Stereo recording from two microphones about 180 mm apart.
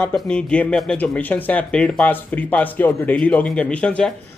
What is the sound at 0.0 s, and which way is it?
Speech, 5° left (ahead or behind).